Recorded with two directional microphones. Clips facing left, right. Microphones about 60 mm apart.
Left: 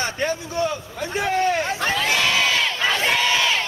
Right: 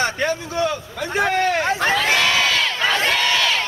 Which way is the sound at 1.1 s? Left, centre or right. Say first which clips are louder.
Right 2 dB; right.